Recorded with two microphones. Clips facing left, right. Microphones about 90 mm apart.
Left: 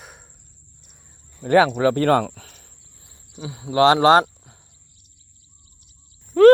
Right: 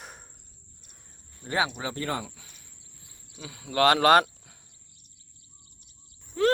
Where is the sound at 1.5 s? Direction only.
50° left (ahead or behind).